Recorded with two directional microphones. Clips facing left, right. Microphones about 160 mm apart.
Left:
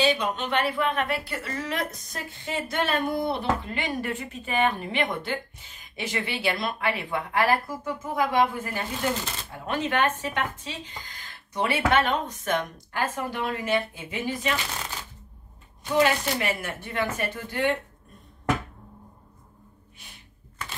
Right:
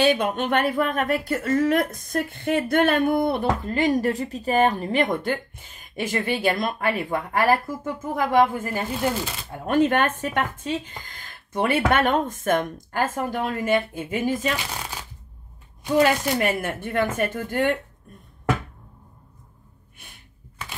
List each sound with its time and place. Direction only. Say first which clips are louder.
0.0 s speech: right 4 dB; 55° right (ahead or behind)
16.0 s speech: right 3 dB; 50° right (ahead or behind)